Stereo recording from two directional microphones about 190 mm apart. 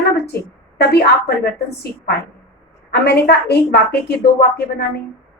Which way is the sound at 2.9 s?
60° left (ahead or behind).